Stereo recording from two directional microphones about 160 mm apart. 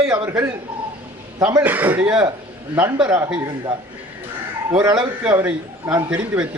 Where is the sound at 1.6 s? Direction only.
10° right (ahead or behind).